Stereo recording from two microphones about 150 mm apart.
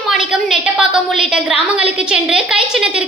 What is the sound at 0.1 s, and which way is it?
A woman's voice, 5° right (ahead or behind).